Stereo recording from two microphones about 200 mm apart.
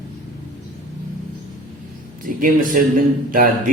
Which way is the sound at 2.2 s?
45° right (ahead or behind).